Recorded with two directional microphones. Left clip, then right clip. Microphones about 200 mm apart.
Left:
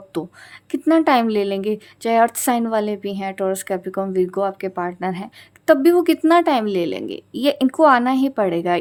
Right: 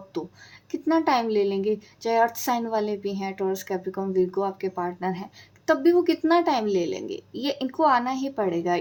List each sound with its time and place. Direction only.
0.7 s a woman's voice: 40° left (ahead or behind)